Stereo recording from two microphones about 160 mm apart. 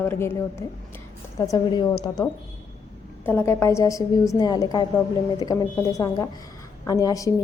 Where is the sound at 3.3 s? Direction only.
15° left (ahead or behind).